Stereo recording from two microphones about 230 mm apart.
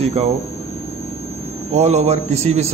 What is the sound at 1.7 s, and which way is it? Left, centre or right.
Speech, right.